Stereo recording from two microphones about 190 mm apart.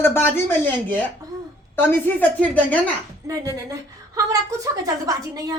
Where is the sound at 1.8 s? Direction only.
10° left (ahead or behind).